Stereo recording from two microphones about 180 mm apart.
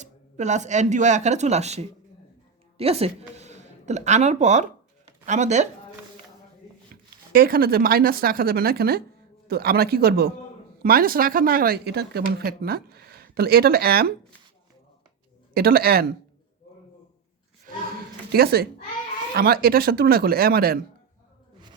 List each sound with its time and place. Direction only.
0.0 s a woman's voice: 40° right (ahead or behind)
7.3 s speech: 55° right (ahead or behind)
15.5 s speech: 55° right (ahead or behind)
18.3 s a child's voice: 60° right (ahead or behind)